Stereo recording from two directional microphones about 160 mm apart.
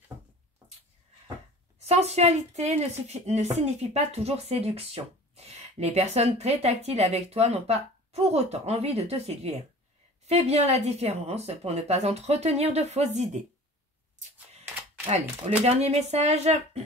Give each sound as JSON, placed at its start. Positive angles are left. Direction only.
{"t": 1.8, "sound": "speech", "side_deg": -40}
{"t": 14.2, "sound": "a sound", "side_deg": -50}
{"t": 15.6, "sound": "speech", "side_deg": -40}